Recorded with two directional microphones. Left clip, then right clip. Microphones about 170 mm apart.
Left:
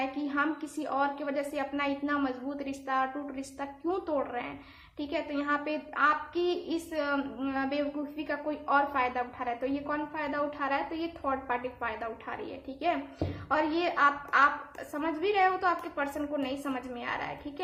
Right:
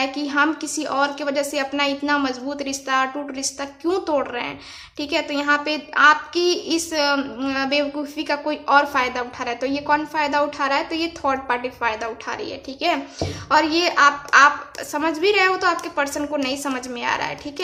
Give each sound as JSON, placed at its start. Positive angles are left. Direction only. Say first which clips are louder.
{"t": 0.0, "sound": "a woman's voice", "louder": "right 11 dB", "side_deg": -25}